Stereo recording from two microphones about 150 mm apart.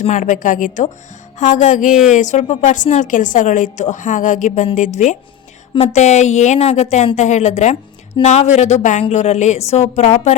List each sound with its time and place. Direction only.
0.2 s a woman's voice: 60° left (ahead or behind)